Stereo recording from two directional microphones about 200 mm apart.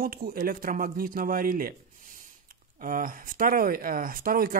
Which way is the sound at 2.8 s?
45° right (ahead or behind).